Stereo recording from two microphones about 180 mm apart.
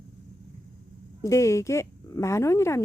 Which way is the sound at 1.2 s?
15° left (ahead or behind).